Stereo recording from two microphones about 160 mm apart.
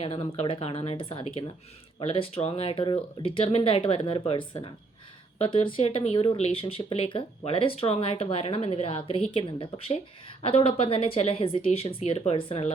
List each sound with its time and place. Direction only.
0.0 s speech: 35° left (ahead or behind)